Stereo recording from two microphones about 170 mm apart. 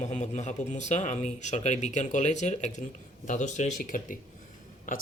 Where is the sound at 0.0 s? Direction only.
45° left (ahead or behind).